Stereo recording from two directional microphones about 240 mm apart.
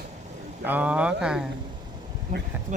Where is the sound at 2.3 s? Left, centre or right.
Right.